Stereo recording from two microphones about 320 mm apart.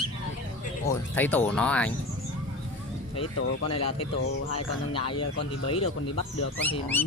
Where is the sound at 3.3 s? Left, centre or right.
Left.